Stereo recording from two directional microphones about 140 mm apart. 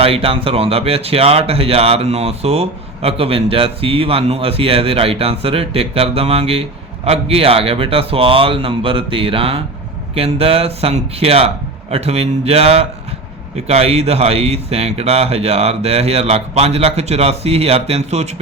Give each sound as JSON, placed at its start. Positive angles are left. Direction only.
{"t": 0.0, "sound": "speech", "side_deg": -45}